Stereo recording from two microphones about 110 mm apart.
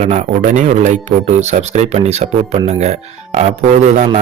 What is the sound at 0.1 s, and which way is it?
A man's voice, 90° right.